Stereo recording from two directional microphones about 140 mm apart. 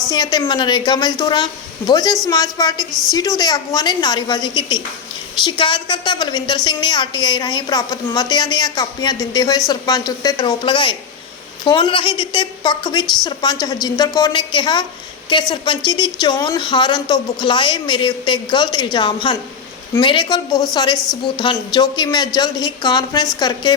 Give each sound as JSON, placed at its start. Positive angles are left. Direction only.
{"t": 0.1, "sound": "a woman's voice", "side_deg": 30}